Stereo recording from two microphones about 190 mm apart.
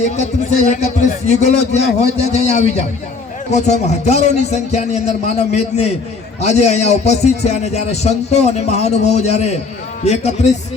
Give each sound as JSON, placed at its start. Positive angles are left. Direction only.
{"t": 0.0, "sound": "a man's voice", "side_deg": 35}